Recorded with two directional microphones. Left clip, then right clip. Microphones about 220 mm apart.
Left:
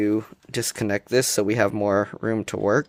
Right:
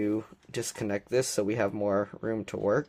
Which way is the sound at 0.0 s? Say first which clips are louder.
Left 7 dB; 40° left (ahead or behind).